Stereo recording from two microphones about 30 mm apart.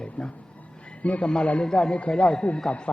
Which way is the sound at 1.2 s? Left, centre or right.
Left.